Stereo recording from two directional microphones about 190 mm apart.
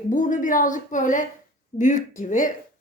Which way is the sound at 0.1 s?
40° left (ahead or behind).